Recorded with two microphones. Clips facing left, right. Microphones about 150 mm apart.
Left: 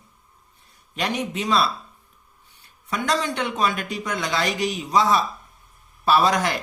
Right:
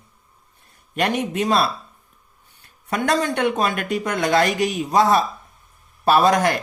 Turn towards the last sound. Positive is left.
turn(degrees=-50)  # may be behind; listen again after turning